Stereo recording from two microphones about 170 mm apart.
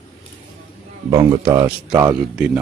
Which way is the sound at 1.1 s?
20° right (ahead or behind).